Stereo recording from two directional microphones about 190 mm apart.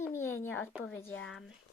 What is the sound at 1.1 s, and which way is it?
Speech, 90° left.